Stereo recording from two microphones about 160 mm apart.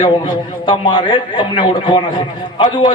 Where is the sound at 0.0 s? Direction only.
30° left (ahead or behind).